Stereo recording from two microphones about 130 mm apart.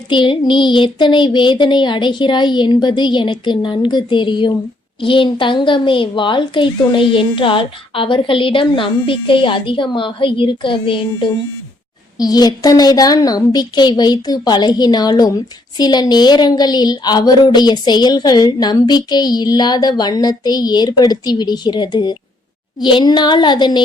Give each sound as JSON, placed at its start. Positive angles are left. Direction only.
{"t": 0.1, "sound": "speech", "side_deg": 40}